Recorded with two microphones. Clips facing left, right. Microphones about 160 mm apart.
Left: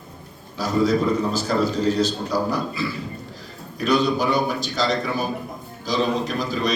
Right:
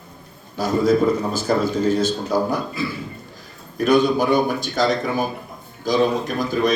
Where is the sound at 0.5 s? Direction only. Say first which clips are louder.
Right 2 dB; 50° right (ahead or behind).